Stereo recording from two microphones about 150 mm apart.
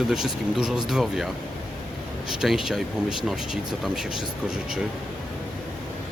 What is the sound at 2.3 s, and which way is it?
Speech, 5° right (ahead or behind).